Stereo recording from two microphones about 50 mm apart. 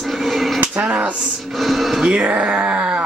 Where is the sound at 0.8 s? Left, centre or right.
Right.